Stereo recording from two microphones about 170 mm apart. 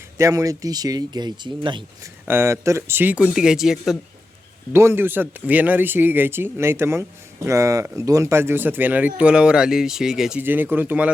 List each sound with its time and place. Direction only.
0.2 s speech: 20° right (ahead or behind)
2.2 s speech: 15° right (ahead or behind)
4.7 s speech: 15° right (ahead or behind)